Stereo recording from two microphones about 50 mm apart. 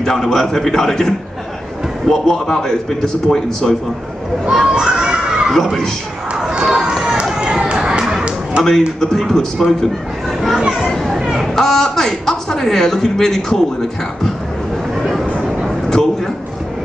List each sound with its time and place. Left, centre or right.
0.0 s a man's voice: centre
4.5 s children playing: centre
5.5 s speech: centre
6.3 s crowd: centre
6.7 s run: centre
7.3 s a sound: centre
8.6 s a man's voice: centre
10.5 s children playing: centre
10.9 s children playing: centre
11.1 s a sound: centre
11.5 s a man's voice: centre
15.4 s a sound: centre